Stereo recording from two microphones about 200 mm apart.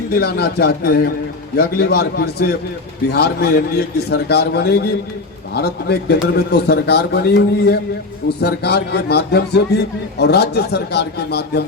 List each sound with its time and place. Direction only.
0.1 s a man's voice: 55° left (ahead or behind)